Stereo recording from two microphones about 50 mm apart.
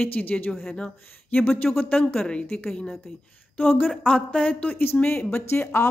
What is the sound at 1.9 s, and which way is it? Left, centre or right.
Speech, centre.